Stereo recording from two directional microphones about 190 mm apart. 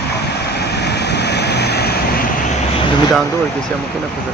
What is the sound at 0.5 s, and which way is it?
Vehicle, 60° left (ahead or behind).